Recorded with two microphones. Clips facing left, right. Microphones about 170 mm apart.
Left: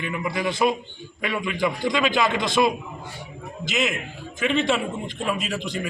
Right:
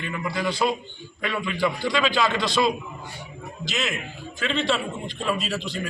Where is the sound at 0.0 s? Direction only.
15° left (ahead or behind).